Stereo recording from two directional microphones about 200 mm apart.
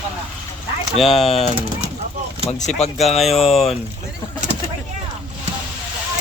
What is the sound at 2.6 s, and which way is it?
Speech, 35° left (ahead or behind).